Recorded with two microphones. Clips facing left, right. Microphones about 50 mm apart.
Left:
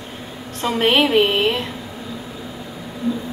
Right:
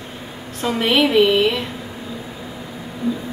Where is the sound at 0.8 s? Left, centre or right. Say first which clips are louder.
Right 1 dB; left.